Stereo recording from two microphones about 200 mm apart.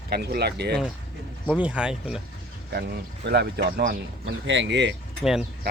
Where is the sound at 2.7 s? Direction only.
55° right (ahead or behind).